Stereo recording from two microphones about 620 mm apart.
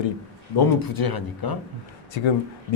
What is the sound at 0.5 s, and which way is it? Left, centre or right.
Speech, left.